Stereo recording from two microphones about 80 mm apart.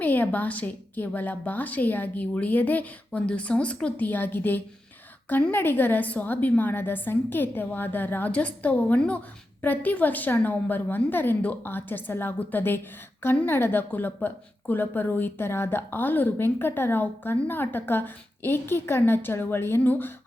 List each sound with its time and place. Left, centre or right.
0.0 s a woman's voice: left